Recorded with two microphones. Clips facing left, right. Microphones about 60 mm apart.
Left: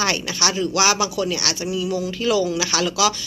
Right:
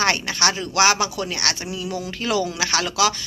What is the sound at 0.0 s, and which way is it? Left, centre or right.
Speech, right.